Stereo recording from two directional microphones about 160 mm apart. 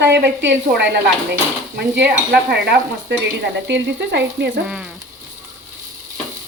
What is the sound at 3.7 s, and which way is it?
Speech, 90° right.